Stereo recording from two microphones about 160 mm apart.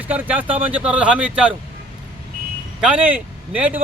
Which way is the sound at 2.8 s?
10° right (ahead or behind).